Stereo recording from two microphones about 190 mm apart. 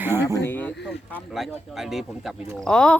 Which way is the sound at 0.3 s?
10° left (ahead or behind).